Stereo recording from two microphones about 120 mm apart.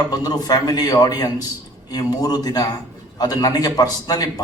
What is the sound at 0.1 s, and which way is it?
A man's voice, 35° left (ahead or behind).